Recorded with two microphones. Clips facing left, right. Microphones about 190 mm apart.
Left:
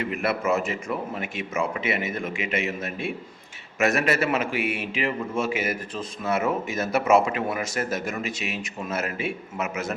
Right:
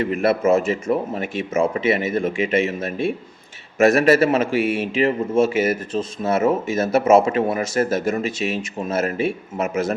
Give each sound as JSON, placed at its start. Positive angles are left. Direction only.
{"t": 0.0, "sound": "a man's voice", "side_deg": -30}